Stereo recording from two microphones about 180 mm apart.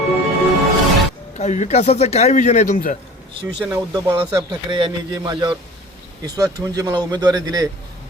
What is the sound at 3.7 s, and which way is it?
Speech, 15° right (ahead or behind).